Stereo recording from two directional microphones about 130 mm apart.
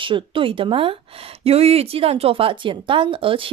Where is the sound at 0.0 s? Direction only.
40° right (ahead or behind).